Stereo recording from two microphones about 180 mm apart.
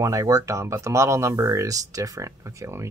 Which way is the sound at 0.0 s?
20° right (ahead or behind).